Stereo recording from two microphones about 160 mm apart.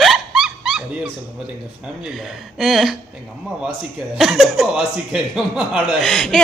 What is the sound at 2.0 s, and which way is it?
Speech, centre (ahead or behind).